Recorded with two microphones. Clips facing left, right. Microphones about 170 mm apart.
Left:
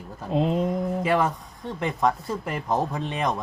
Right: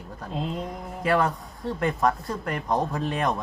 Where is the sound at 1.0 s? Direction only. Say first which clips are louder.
Right 3 dB; centre (ahead or behind).